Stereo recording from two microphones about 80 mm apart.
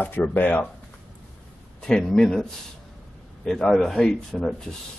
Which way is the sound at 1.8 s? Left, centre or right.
Centre.